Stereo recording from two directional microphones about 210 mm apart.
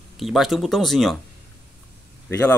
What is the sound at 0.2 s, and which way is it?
Speech, centre (ahead or behind).